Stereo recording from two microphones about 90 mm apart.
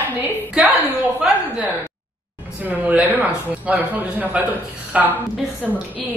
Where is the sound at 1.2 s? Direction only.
5° right (ahead or behind).